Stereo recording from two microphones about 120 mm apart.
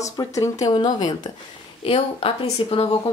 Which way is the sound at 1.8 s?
50° left (ahead or behind).